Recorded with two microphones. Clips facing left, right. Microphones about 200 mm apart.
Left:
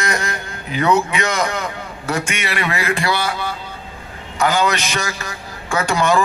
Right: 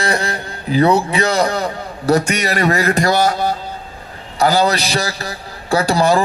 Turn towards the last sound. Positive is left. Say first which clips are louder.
# right 3 dB
turn(degrees=-35)  # may be behind; listen again after turning